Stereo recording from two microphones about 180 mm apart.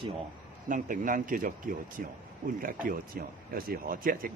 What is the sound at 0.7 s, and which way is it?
Speech, 50° right (ahead or behind).